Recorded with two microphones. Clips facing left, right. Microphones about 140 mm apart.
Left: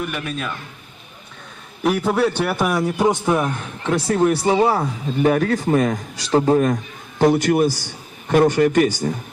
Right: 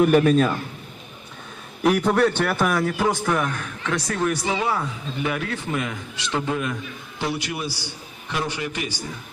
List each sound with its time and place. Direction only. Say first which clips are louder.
0.0 s a man's voice: right 10 dB; 40° right (ahead or behind)
1.8 s a man's voice: even; 5° left (ahead or behind); by 9.1 s 50° left (ahead or behind)